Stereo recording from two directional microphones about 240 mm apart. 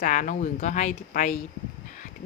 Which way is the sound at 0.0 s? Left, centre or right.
Left.